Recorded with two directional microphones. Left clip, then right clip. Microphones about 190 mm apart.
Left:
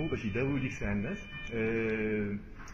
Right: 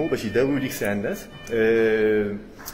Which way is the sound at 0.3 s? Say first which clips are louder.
Right 12 dB; 20° right (ahead or behind).